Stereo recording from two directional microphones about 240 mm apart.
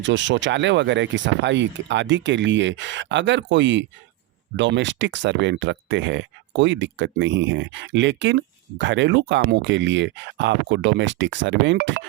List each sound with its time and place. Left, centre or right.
0.0 s speech: right